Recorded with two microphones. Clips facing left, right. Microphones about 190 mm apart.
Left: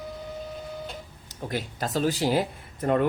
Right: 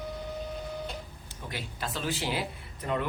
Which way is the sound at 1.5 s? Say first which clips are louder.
Left 7 dB; 45° left (ahead or behind).